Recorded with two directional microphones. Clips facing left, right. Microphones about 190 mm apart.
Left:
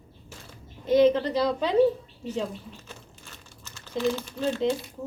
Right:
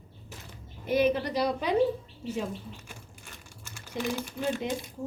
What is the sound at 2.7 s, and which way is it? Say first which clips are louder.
Crumpling: left 2 dB; 15° right (ahead or behind).